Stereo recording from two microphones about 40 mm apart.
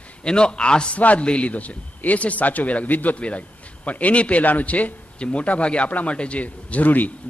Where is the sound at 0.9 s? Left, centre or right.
Left.